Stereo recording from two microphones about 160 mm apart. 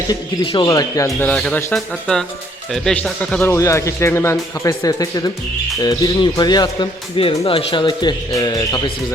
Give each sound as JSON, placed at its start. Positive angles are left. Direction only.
{"t": 0.1, "sound": "speech", "side_deg": 25}
{"t": 1.2, "sound": "speech", "side_deg": 5}
{"t": 3.5, "sound": "speech", "side_deg": 20}